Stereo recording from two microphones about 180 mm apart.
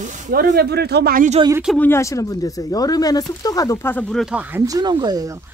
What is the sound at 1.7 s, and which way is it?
Speech, 15° left (ahead or behind).